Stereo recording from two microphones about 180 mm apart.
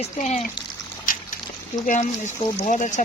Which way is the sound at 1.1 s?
50° left (ahead or behind).